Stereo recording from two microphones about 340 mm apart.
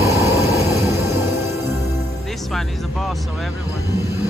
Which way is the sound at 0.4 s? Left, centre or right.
Centre.